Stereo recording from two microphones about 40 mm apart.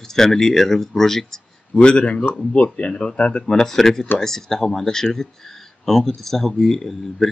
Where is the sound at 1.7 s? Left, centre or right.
Left.